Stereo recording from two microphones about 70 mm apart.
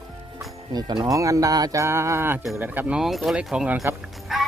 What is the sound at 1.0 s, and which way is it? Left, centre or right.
Speech, right.